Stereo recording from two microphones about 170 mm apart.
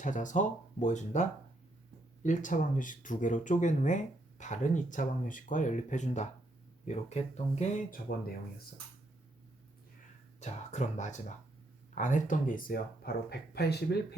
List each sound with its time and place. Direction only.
0.0 s speech: 45° left (ahead or behind)
10.4 s speech: 45° left (ahead or behind); by 13.1 s 60° left (ahead or behind)
13.5 s speech: 75° left (ahead or behind)